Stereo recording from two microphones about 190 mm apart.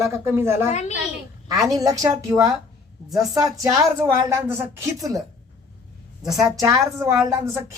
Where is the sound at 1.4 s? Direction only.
20° right (ahead or behind).